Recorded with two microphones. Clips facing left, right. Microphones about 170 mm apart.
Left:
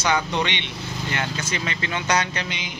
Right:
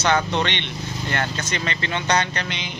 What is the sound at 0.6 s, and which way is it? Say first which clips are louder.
Speech: right 1 dB; 55° right (ahead or behind).